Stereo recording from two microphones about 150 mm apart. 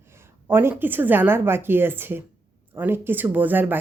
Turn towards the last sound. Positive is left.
turn(degrees=-10)  # may be behind; listen again after turning